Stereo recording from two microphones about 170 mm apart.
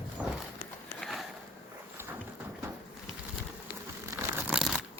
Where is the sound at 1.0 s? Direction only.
Centre (ahead or behind).